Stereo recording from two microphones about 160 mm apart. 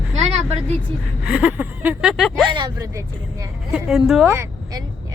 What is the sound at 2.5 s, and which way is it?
Speech, 25° right (ahead or behind).